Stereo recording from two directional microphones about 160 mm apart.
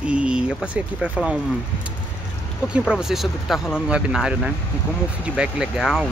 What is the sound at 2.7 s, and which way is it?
Speech, 5° right (ahead or behind).